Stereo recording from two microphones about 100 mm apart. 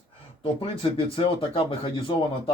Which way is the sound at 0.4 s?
55° left (ahead or behind).